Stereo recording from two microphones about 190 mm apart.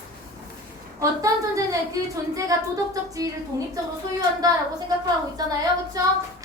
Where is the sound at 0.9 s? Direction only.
15° right (ahead or behind).